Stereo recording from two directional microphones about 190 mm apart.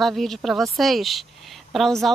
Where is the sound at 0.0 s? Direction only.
Centre (ahead or behind).